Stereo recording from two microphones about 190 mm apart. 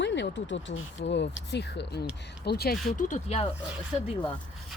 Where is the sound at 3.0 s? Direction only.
40° left (ahead or behind).